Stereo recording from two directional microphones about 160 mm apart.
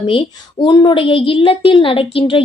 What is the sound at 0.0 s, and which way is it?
A woman's voice, 30° left (ahead or behind).